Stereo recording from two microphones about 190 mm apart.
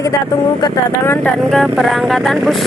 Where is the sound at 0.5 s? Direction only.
20° left (ahead or behind).